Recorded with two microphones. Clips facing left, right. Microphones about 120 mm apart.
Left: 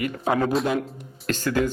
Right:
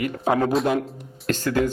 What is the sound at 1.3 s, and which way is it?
Speech, 45° right (ahead or behind).